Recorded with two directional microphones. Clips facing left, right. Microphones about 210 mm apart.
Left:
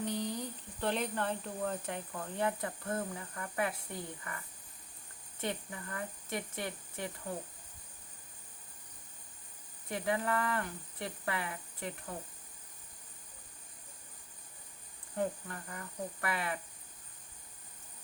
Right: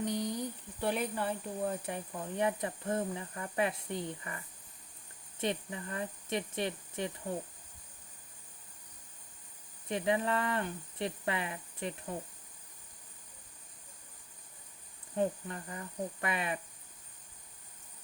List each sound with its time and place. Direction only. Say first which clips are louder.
0.0 s speech: right 2 dB; 15° right (ahead or behind)
5.4 s speech: right 4 dB; 20° right (ahead or behind)
9.9 s speech: right 2 dB; 20° right (ahead or behind)
15.1 s speech: right 3 dB; 20° right (ahead or behind)